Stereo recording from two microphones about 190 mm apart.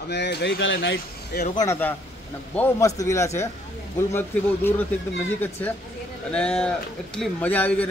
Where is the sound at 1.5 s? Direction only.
15° left (ahead or behind).